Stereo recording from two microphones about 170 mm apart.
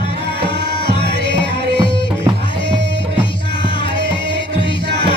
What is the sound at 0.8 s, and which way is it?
Music, 80° right.